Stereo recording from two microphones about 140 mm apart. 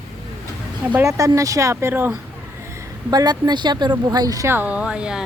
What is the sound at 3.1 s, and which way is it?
A woman's voice, 30° right (ahead or behind).